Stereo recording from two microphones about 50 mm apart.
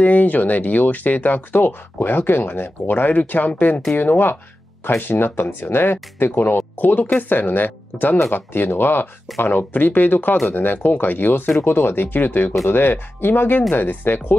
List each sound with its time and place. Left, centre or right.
0.0 s speech: left